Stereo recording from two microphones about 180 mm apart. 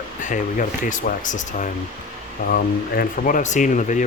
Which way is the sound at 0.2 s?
45° left (ahead or behind).